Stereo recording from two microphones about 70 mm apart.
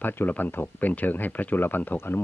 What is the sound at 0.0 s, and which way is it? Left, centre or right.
Speech, left.